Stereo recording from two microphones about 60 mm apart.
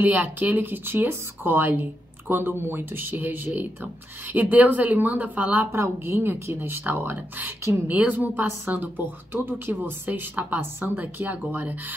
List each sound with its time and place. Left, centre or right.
0.0 s speech: right
5.7 s speech: right
6.8 s speech: right